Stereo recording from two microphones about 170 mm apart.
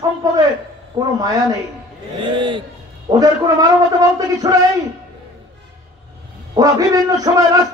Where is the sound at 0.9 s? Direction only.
20° right (ahead or behind).